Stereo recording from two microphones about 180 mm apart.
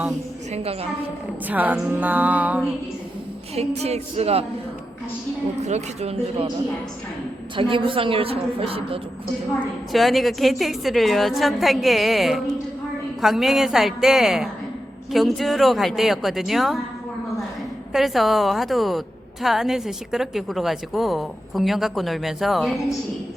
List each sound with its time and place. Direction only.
0.5 s a woman's voice: 35° right (ahead or behind)
1.5 s music: 10° right (ahead or behind)
3.5 s a woman's voice: 35° right (ahead or behind)
5.6 s a woman's voice: 40° right (ahead or behind)
7.5 s a woman's voice: 30° right (ahead or behind)
9.6 s a woman's voice: centre (ahead or behind)
17.9 s a woman's voice: centre (ahead or behind)